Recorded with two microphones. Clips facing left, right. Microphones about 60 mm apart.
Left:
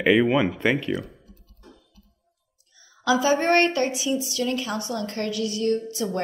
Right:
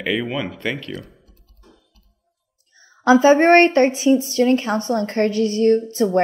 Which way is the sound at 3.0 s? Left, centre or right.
Right.